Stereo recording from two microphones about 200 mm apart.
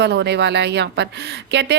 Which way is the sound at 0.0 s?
60° right (ahead or behind).